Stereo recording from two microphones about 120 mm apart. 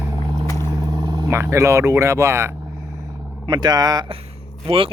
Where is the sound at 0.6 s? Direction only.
35° right (ahead or behind).